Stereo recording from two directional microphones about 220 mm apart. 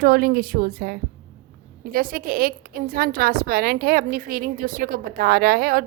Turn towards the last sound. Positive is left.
turn(degrees=-40)  # may be behind; listen again after turning